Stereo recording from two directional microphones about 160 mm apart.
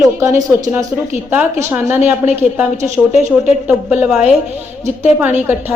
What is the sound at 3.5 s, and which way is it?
A woman's voice, 10° right (ahead or behind).